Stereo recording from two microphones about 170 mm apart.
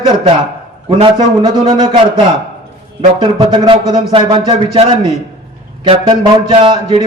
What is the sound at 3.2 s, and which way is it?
A man's voice, 30° right (ahead or behind).